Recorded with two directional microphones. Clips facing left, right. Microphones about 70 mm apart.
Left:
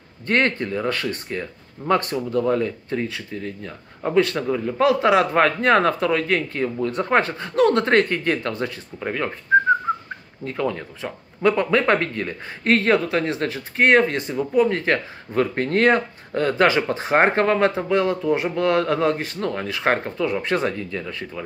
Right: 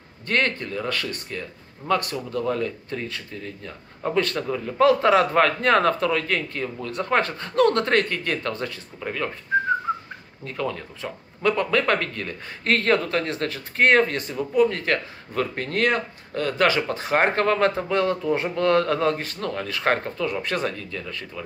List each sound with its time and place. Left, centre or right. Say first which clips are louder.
0.3 s speech: left 3 dB; left
2.3 s a man's voice: left 4 dB; centre
10.4 s a man's voice: left 4 dB; centre